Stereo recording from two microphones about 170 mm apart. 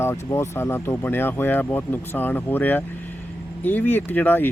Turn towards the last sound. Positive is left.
turn(degrees=10)  # may be behind; listen again after turning